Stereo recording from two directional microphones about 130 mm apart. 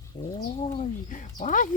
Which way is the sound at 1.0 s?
85° left.